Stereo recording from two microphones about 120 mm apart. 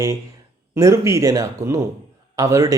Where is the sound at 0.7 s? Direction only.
25° right (ahead or behind).